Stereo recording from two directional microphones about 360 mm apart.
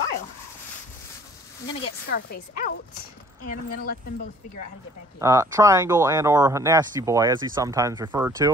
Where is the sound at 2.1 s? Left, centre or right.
Left.